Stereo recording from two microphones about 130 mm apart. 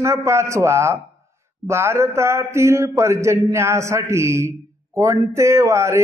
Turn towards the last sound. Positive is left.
turn(degrees=-20)  # may be behind; listen again after turning